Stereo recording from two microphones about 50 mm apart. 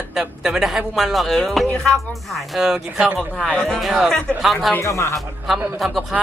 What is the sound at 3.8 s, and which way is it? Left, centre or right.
Speech, centre.